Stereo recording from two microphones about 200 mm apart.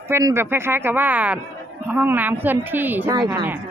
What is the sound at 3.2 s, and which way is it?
Speech, 20° right (ahead or behind).